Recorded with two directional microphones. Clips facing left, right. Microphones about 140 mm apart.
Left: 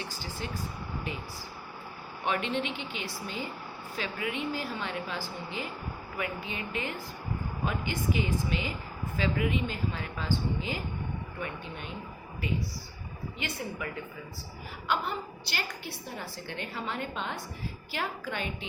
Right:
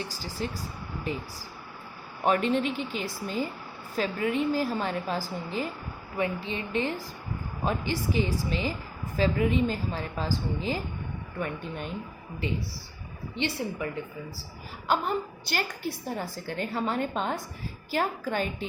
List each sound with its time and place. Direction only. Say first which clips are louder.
0.0 s a woman's voice: right 4 dB; 35° right (ahead or behind)
2.2 s a woman's voice: right 6 dB; 40° right (ahead or behind)
11.4 s speech: right 6 dB; 45° right (ahead or behind)
12.4 s a woman's voice: right 1 dB; 30° right (ahead or behind)
14.8 s a woman's voice: right 4 dB; 45° right (ahead or behind)